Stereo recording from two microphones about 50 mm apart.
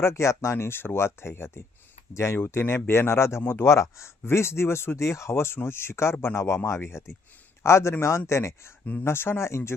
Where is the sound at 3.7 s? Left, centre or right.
Left.